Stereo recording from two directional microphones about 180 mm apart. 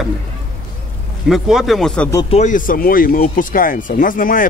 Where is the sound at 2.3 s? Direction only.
45° left (ahead or behind).